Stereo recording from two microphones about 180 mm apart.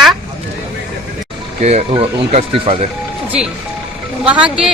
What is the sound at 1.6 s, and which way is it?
Speech, 35° right (ahead or behind).